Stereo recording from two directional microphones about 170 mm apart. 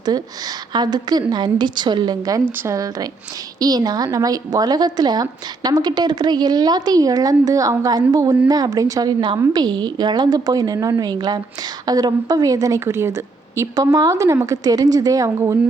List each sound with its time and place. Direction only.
0.7 s a woman's voice: 25° right (ahead or behind)